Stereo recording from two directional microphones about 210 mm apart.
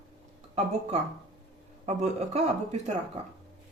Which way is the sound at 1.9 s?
30° right (ahead or behind).